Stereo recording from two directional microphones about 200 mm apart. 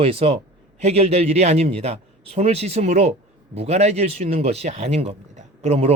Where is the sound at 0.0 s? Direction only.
30° right (ahead or behind).